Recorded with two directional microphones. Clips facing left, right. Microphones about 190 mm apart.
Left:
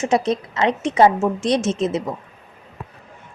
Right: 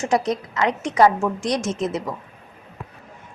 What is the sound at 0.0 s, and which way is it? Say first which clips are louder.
A woman's voice: left 2 dB; 25° left (ahead or behind).